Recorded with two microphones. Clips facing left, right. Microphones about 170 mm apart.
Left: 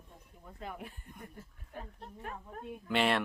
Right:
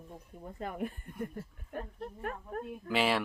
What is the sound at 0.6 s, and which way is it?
Speech, 50° right (ahead or behind).